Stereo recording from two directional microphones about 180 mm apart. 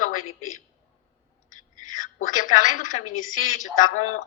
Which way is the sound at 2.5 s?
45° left (ahead or behind).